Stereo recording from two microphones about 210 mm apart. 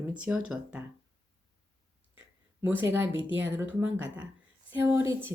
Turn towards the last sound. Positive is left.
turn(degrees=-10)  # may be behind; listen again after turning